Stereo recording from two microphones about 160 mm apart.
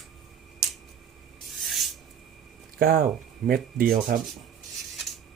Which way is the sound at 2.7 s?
65° right (ahead or behind).